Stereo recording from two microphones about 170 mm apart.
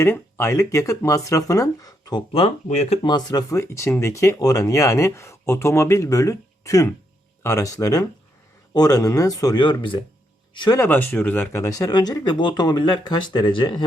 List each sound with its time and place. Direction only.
0.0 s speech: 15° left (ahead or behind); by 3.0 s 40° left (ahead or behind)
3.0 s speech: 25° left (ahead or behind)
10.8 s speech: 10° left (ahead or behind); by 13.8 s 30° left (ahead or behind)